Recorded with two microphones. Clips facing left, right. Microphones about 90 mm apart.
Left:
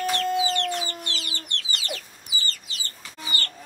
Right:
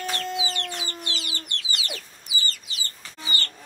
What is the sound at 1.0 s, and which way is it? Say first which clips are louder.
Chicken: even; 10° right (ahead or behind).